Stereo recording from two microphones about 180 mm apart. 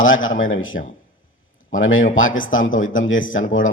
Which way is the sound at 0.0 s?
90° left.